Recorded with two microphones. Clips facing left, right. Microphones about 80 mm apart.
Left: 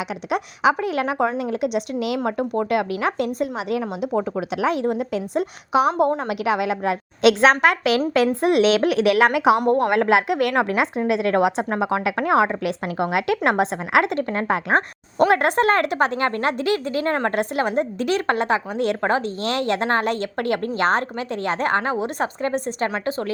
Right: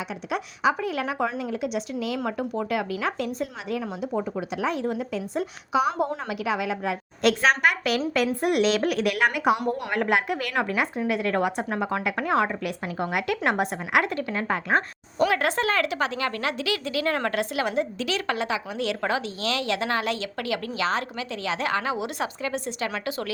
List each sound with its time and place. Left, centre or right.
0.3 s a woman's voice: left
4.9 s a woman's voice: left
9.6 s a woman's voice: left
10.1 s a woman's voice: left
12.6 s a woman's voice: left
14.3 s a woman's voice: left
15.3 s a woman's voice: left
17.3 s a woman's voice: left
22.9 s speech: left